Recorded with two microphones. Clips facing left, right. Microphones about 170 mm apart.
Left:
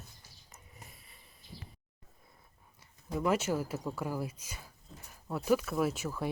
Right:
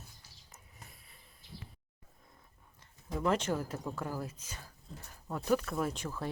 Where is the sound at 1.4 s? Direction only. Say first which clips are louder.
Even; 75° right (ahead or behind).